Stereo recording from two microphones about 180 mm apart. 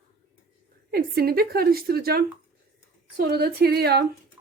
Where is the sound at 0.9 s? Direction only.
55° right (ahead or behind).